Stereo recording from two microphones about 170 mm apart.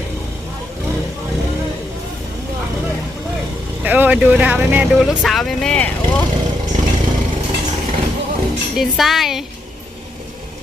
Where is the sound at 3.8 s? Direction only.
10° right (ahead or behind); by 6.2 s 5° left (ahead or behind).